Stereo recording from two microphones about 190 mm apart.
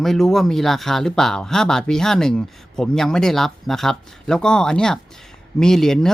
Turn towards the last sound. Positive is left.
turn(degrees=0)  # may be behind; listen again after turning